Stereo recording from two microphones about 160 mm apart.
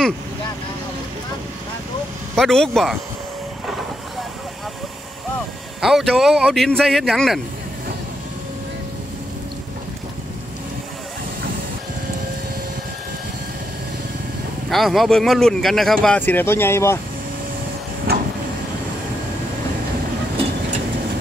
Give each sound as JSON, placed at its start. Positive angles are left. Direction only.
{"t": 2.3, "sound": "speech", "side_deg": 5}
{"t": 5.8, "sound": "speech", "side_deg": 0}
{"t": 14.7, "sound": "speech", "side_deg": 0}
{"t": 18.1, "sound": "vehicle", "side_deg": -75}